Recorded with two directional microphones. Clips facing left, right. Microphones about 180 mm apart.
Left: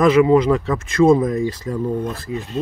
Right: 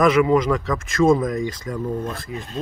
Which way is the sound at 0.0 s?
30° left (ahead or behind).